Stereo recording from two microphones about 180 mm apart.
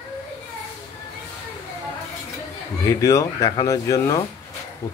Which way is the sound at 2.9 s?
15° left (ahead or behind).